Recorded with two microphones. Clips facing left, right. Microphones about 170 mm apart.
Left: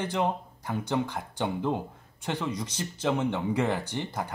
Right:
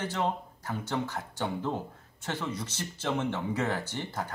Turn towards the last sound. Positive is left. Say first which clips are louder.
# left 3 dB
turn(degrees=15)  # may be behind; listen again after turning